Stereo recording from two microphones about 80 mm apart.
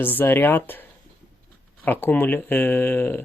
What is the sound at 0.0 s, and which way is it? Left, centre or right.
Speech, left.